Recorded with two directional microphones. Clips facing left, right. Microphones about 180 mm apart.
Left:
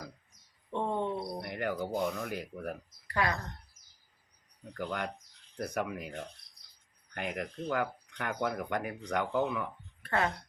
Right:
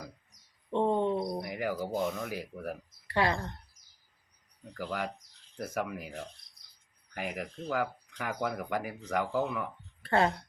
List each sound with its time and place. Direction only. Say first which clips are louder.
0.7 s a sound: right 5 dB; 20° right (ahead or behind)
1.4 s speech: right 1 dB; 5° right (ahead or behind)
3.1 s speech: right 3 dB; 30° right (ahead or behind)
4.8 s speech: right 1 dB; 5° right (ahead or behind)
10.0 s speech: right 4 dB; 30° right (ahead or behind)